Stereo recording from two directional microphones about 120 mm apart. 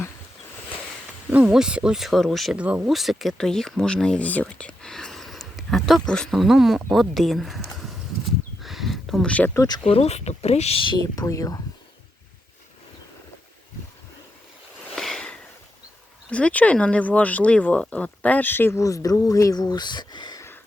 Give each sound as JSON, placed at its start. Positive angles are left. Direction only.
{"t": 1.3, "sound": "speech", "side_deg": -10}
{"t": 2.6, "sound": "speech", "side_deg": -10}
{"t": 8.6, "sound": "a sound", "side_deg": 0}
{"t": 9.6, "sound": "speech", "side_deg": 35}
{"t": 9.8, "sound": "speech", "side_deg": 60}
{"t": 11.1, "sound": "speech", "side_deg": 30}
{"t": 14.9, "sound": "a sound", "side_deg": 5}
{"t": 16.3, "sound": "speech", "side_deg": 10}